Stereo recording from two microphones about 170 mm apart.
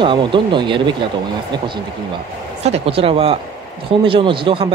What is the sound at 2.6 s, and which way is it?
Speech, 35° right (ahead or behind).